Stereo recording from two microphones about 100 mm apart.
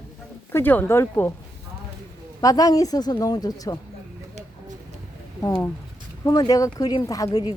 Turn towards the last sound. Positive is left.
turn(degrees=40)  # may be behind; listen again after turning